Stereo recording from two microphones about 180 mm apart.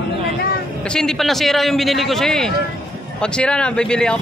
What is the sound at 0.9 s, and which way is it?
A man's voice, centre (ahead or behind).